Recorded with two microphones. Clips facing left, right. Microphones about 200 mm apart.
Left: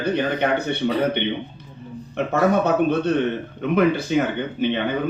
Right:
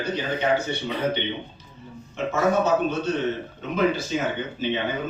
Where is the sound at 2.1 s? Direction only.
60° left (ahead or behind).